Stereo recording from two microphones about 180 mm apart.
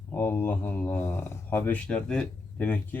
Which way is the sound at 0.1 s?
10° left (ahead or behind).